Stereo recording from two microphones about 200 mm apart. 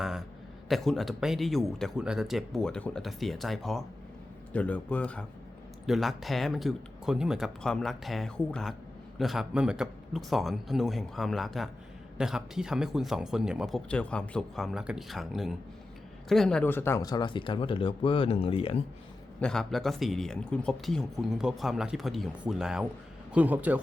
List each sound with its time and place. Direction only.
0.0 s a sound: centre (ahead or behind)
0.7 s a man's voice: centre (ahead or behind); by 18.8 s 25° left (ahead or behind)
19.4 s a man's voice: 5° left (ahead or behind)